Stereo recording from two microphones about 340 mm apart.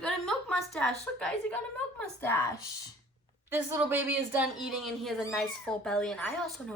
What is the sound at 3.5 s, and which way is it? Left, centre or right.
Speech, centre.